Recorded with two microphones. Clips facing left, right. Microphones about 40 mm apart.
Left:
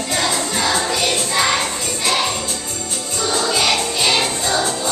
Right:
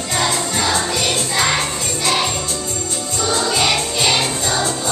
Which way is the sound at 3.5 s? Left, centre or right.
Centre.